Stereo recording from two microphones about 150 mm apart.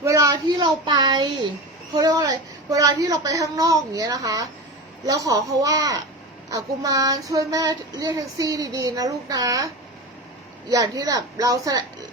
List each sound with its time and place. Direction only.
0.0 s a sound: 20° right (ahead or behind)
2.0 s child singing: 25° right (ahead or behind)
10.7 s child singing: 25° right (ahead or behind)